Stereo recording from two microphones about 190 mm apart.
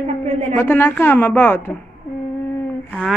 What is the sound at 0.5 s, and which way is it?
A woman's voice, 10° left (ahead or behind).